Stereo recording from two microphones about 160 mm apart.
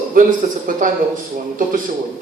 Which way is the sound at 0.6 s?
55° right (ahead or behind).